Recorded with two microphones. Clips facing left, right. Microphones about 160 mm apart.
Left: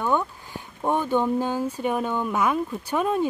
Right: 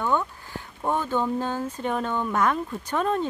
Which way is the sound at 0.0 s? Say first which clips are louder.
Left 1 dB; 15° left (ahead or behind).